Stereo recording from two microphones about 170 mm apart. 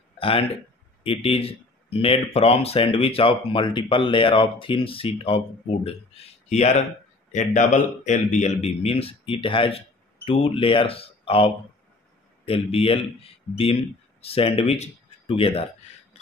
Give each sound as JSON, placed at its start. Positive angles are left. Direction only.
{"t": 0.2, "sound": "speech", "side_deg": 30}
{"t": 8.8, "sound": "speech", "side_deg": 35}